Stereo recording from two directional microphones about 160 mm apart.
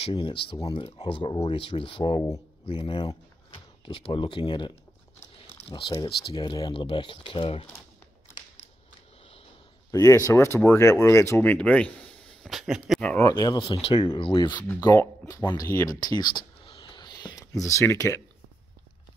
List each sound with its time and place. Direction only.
0.0 s speech: 30° left (ahead or behind)
9.8 s speech: 20° left (ahead or behind); by 13.1 s centre (ahead or behind)
13.1 s speech: 20° left (ahead or behind)